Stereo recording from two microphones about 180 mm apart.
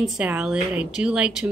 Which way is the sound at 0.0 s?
5° right (ahead or behind).